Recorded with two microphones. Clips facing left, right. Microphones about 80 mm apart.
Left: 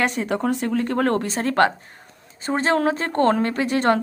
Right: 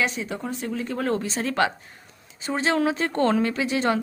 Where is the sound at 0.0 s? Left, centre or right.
Left.